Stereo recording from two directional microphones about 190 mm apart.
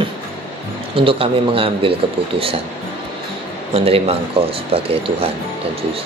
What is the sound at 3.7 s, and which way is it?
Speech, 30° right (ahead or behind).